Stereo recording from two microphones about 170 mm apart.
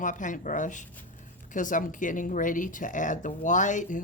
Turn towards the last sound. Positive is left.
turn(degrees=50)  # may be behind; listen again after turning